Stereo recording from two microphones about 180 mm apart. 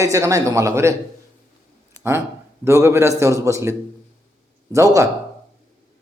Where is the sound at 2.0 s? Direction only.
15° right (ahead or behind).